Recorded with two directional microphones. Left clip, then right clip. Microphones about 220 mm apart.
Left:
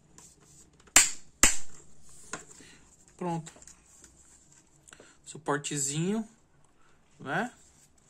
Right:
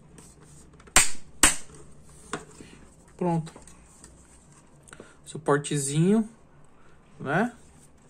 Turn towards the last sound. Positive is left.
turn(degrees=10)  # may be behind; listen again after turning